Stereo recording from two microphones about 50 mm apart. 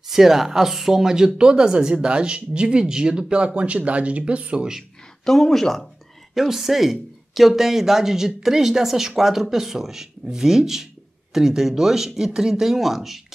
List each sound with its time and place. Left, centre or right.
0.1 s speech: centre; by 4.6 s right
5.2 s speech: centre